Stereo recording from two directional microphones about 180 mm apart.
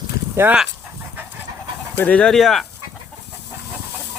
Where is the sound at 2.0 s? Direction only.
5° left (ahead or behind).